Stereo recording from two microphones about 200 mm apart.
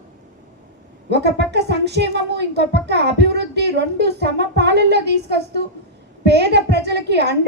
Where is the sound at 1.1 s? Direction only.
55° right (ahead or behind).